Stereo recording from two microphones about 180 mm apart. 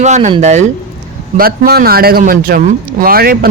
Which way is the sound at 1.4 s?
60° right (ahead or behind).